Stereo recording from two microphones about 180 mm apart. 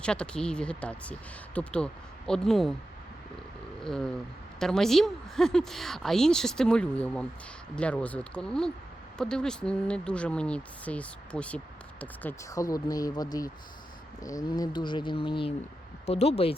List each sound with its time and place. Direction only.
0.0 s a woman's voice: 5° left (ahead or behind)
3.8 s a woman's voice: 5° left (ahead or behind); by 16.6 s 35° left (ahead or behind)